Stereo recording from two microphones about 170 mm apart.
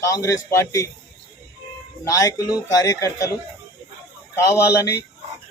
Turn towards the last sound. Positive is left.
turn(degrees=20)  # may be behind; listen again after turning